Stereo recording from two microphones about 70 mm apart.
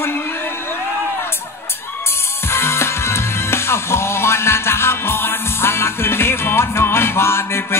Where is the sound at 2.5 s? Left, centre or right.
Left.